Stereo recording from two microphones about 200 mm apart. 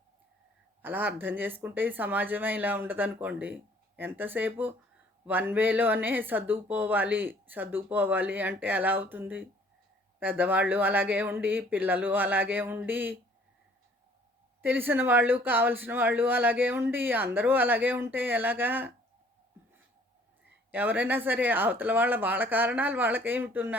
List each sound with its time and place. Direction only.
0.8 s speech: 10° right (ahead or behind)
14.6 s speech: 10° right (ahead or behind)
20.7 s speech: 10° right (ahead or behind)